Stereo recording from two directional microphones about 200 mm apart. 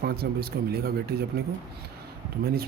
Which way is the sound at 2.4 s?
50° right (ahead or behind).